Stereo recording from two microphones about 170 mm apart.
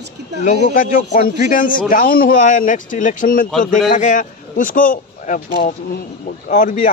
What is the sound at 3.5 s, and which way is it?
Speech, 5° left (ahead or behind).